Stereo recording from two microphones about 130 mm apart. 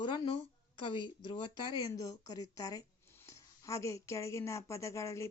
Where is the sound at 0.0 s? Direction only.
40° left (ahead or behind).